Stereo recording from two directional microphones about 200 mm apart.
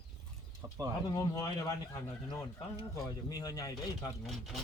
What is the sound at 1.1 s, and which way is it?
Speech, 20° left (ahead or behind).